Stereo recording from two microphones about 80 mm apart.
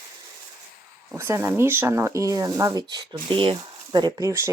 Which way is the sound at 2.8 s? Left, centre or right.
Right.